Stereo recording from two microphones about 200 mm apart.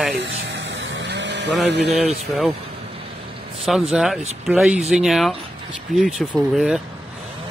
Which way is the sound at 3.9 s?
Centre (ahead or behind).